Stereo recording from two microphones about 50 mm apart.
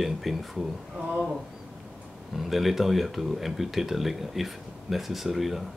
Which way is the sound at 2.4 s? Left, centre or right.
Centre.